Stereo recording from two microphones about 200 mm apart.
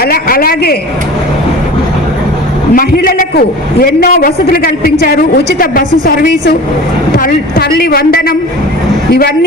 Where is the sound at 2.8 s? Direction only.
50° left (ahead or behind).